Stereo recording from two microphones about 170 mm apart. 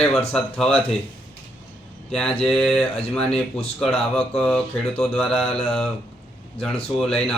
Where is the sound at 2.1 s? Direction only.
5° left (ahead or behind).